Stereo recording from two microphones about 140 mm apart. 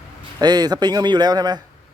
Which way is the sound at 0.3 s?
30° right (ahead or behind).